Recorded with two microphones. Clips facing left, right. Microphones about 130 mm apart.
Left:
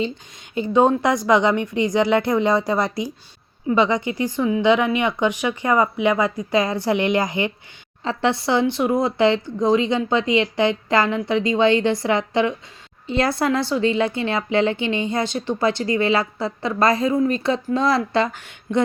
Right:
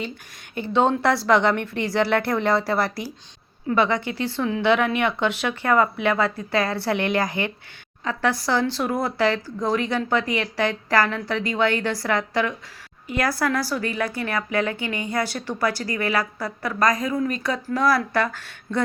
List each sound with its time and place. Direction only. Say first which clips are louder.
0.6 s a woman's voice: left 3 dB; 10° left (ahead or behind)